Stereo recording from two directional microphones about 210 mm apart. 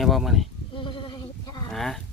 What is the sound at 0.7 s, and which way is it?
Sheep, 25° left (ahead or behind).